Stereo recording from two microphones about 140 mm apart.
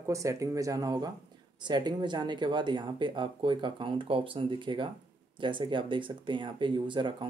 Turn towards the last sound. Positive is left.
turn(degrees=-35)  # may be behind; listen again after turning